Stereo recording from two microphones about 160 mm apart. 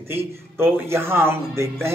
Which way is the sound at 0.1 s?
15° right (ahead or behind).